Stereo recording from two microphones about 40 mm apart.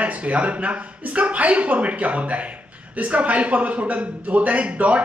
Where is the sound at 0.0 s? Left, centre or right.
Right.